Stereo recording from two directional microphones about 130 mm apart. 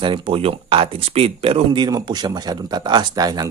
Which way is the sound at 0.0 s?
40° right (ahead or behind).